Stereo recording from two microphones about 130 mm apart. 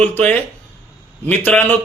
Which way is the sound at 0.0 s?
10° left (ahead or behind).